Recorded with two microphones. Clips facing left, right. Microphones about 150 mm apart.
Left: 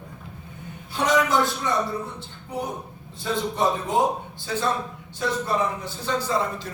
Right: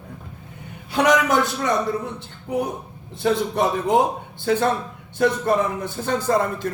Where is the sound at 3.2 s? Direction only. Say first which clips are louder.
Right 7 dB; 65° right (ahead or behind).